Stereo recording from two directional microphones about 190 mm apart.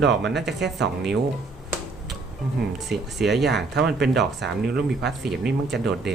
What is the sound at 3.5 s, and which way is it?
Speech, 60° right (ahead or behind).